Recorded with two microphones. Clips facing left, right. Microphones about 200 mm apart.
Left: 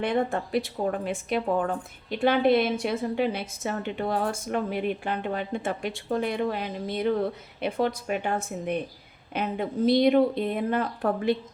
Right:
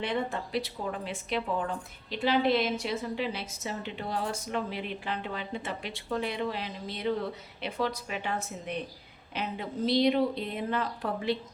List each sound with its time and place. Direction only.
0.0 s a woman's voice: 50° left (ahead or behind)